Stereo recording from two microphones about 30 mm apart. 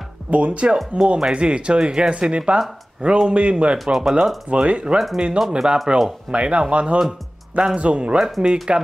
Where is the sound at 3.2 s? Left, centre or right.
Right.